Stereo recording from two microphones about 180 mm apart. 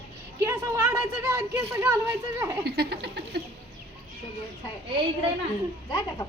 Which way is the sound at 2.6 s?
65° right (ahead or behind).